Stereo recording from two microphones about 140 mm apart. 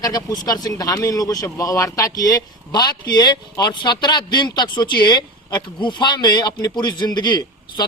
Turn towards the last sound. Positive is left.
turn(degrees=30)  # may be behind; listen again after turning